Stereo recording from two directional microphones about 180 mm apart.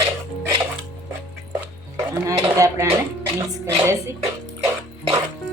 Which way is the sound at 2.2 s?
15° right (ahead or behind).